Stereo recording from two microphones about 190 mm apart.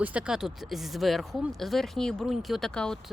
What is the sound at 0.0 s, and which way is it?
A woman's voice, 5° right (ahead or behind).